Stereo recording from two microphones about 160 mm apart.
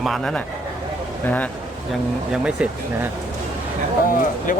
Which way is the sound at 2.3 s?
5° right (ahead or behind).